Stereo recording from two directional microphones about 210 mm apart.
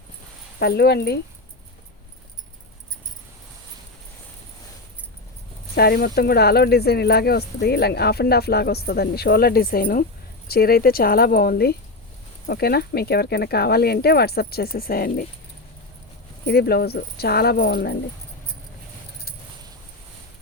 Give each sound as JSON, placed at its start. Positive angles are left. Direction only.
{"t": 0.6, "sound": "speech", "side_deg": 50}
{"t": 5.7, "sound": "speech", "side_deg": 45}
{"t": 16.5, "sound": "speech", "side_deg": 50}